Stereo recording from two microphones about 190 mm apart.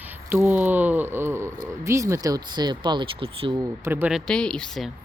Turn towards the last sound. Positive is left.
turn(degrees=5)  # may be behind; listen again after turning